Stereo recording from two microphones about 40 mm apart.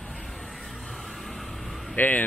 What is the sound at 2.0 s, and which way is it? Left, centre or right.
Speech, left.